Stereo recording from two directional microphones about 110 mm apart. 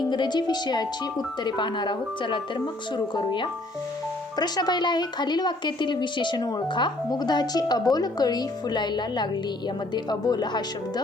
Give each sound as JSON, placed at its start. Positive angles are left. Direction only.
{"t": 0.0, "sound": "speech", "side_deg": 45}